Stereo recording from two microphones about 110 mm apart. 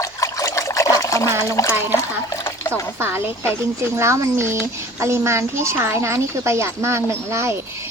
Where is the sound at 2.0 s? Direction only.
25° left (ahead or behind).